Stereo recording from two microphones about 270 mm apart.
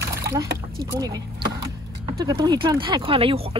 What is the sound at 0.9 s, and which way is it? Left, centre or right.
Speech, centre.